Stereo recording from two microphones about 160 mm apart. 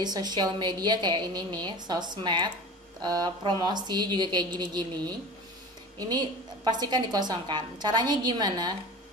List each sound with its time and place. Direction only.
0.0 s a woman's voice: 25° right (ahead or behind)